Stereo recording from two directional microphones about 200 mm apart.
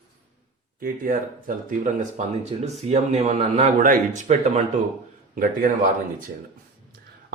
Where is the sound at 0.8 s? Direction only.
45° right (ahead or behind).